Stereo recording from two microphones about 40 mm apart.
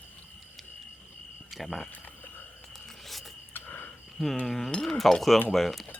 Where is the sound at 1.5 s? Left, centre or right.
Centre.